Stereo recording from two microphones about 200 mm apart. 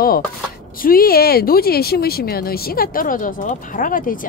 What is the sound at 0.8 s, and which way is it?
Speech, 50° left (ahead or behind).